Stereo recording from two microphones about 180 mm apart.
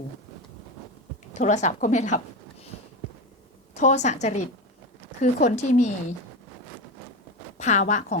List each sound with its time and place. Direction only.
1.3 s speech: 40° left (ahead or behind)
3.8 s speech: 40° left (ahead or behind)
7.6 s speech: 40° left (ahead or behind)